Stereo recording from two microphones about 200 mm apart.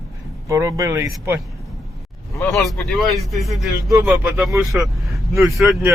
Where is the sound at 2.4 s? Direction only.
Centre (ahead or behind).